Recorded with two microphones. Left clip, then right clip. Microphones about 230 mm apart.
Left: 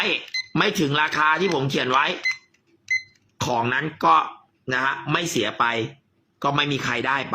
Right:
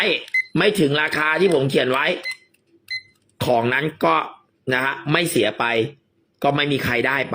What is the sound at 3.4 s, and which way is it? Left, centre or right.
Speech, centre.